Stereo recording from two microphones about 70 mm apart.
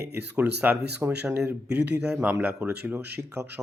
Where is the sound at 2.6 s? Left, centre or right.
Right.